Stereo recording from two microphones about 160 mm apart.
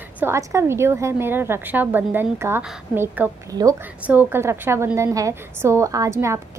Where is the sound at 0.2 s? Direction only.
15° right (ahead or behind).